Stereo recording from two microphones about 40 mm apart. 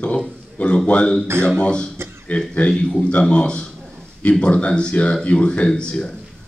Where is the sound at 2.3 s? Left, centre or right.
Left.